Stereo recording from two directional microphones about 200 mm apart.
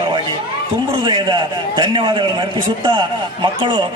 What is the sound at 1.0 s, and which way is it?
A man's voice, 25° right (ahead or behind).